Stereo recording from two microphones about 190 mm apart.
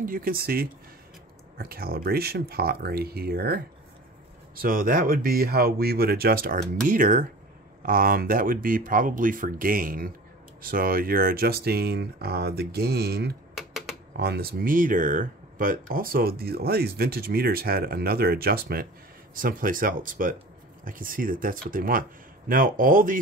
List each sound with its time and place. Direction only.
0.0 s speech: 50° right (ahead or behind)
13.6 s typewriter: centre (ahead or behind)
14.1 s speech: 60° right (ahead or behind)